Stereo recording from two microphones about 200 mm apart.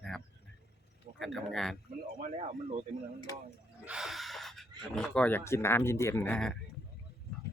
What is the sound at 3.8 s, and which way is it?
Speech, centre (ahead or behind).